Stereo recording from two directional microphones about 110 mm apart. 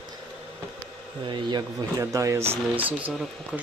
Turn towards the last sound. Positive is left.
turn(degrees=-5)  # may be behind; listen again after turning